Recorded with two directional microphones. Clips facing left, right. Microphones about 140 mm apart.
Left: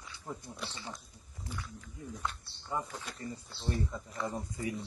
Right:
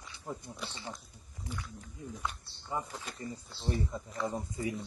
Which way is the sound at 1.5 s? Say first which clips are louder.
Right 1 dB; 15° right (ahead or behind).